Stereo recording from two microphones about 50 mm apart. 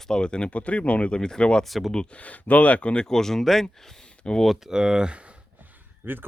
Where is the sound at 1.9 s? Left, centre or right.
Left.